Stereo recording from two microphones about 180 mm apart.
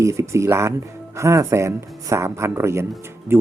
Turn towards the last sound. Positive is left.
turn(degrees=-15)  # may be behind; listen again after turning